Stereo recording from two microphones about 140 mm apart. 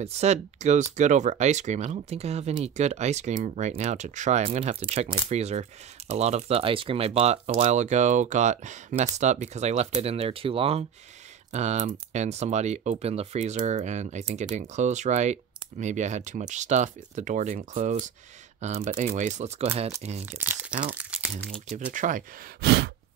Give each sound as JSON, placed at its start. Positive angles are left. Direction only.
{"t": 0.0, "sound": "speech", "side_deg": -50}
{"t": 11.5, "sound": "speech", "side_deg": -55}
{"t": 18.6, "sound": "speech", "side_deg": -50}
{"t": 20.2, "sound": "speech", "side_deg": -15}
{"t": 21.6, "sound": "speech", "side_deg": -65}